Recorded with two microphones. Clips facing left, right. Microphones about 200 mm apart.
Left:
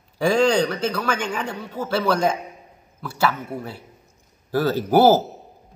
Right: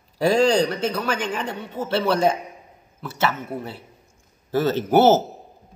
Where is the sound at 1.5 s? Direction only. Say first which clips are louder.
Even; 25° right (ahead or behind).